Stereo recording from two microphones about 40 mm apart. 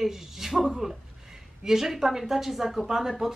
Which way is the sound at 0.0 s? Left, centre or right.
Centre.